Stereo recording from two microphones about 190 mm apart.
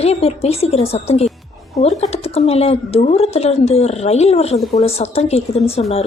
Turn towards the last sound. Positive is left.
turn(degrees=30)  # may be behind; listen again after turning